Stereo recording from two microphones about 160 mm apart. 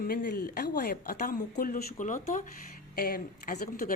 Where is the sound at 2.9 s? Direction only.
70° left (ahead or behind).